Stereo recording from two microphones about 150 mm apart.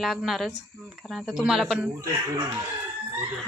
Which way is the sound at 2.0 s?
25° right (ahead or behind).